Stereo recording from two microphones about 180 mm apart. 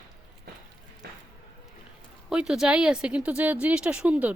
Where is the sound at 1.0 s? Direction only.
65° right (ahead or behind).